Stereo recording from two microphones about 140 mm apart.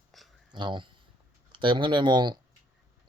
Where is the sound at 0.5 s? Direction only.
35° right (ahead or behind).